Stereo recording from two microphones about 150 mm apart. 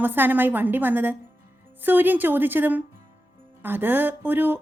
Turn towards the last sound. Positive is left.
turn(degrees=-15)  # may be behind; listen again after turning